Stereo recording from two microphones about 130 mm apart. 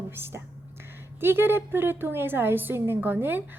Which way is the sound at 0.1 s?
20° right (ahead or behind).